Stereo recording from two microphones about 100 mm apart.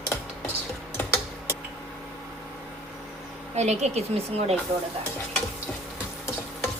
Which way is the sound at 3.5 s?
90° right.